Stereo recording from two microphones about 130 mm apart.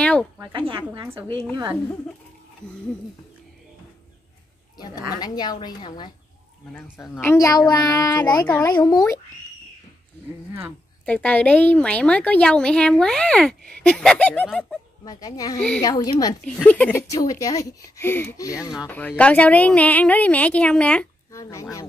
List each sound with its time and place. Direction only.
0.0 s speech: 10° left (ahead or behind)
0.4 s speech: 40° right (ahead or behind)
2.6 s a woman's voice: 5° left (ahead or behind)
4.7 s a woman's voice: 30° left (ahead or behind)
7.0 s speech: 20° left (ahead or behind)
11.1 s a woman's voice: 10° left (ahead or behind)
15.0 s speech: 25° left (ahead or behind)
16.4 s a woman's voice: 10° left (ahead or behind)
17.1 s speech: 25° left (ahead or behind)
18.9 s a woman's voice: 10° left (ahead or behind)
21.3 s speech: 25° left (ahead or behind)